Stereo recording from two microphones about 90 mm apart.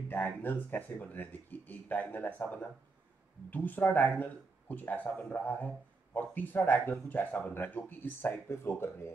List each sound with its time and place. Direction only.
0.1 s speech: 25° left (ahead or behind)